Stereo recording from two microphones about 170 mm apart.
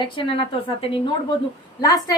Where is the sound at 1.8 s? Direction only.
20° left (ahead or behind).